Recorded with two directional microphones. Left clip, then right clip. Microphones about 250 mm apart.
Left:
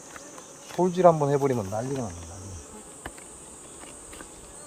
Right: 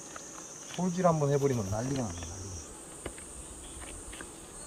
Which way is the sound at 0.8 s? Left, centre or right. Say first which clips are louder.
Left 8 dB; left.